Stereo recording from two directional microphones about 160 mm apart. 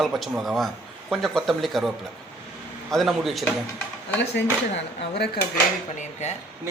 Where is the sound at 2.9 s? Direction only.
Centre (ahead or behind).